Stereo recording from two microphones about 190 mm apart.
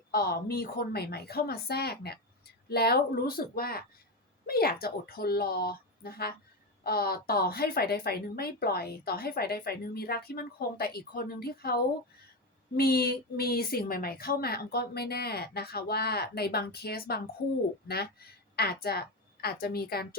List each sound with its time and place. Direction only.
0.1 s a woman's voice: 55° left (ahead or behind)